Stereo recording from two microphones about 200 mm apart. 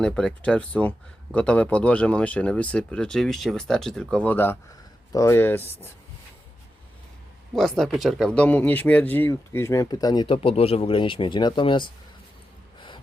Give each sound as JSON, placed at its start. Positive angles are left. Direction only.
{"t": 0.0, "sound": "speech", "side_deg": 5}
{"t": 7.5, "sound": "speech", "side_deg": 0}